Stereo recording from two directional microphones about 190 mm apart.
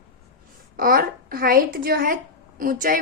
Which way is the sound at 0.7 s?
50° right (ahead or behind).